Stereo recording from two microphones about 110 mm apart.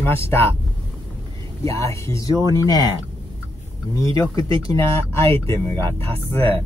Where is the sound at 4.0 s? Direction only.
30° left (ahead or behind).